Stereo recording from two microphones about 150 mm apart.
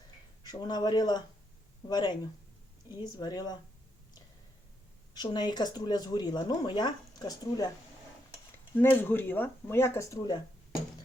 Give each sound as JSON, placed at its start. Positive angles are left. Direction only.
{"t": 0.4, "sound": "speech", "side_deg": 25}
{"t": 5.1, "sound": "speech", "side_deg": 30}
{"t": 8.8, "sound": "speech", "side_deg": 15}